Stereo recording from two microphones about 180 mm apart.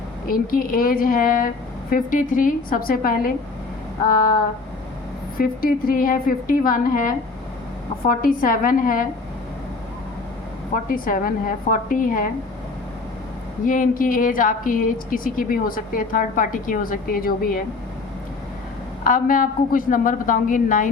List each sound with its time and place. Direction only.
0.3 s speech: 50° left (ahead or behind)
5.4 s speech: 55° left (ahead or behind)
8.0 s speech: 50° left (ahead or behind)
10.8 s speech: 50° left (ahead or behind)
13.7 s speech: 50° left (ahead or behind)
19.0 s speech: 50° left (ahead or behind)